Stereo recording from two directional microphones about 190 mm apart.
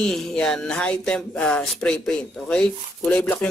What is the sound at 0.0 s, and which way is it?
Speech, centre (ahead or behind).